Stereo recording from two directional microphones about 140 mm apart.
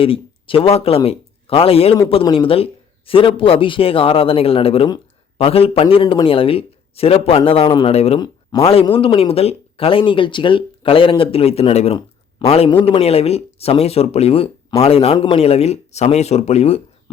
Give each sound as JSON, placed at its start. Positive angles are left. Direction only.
{"t": 0.0, "sound": "speech", "side_deg": 40}
{"t": 7.9, "sound": "speech", "side_deg": 45}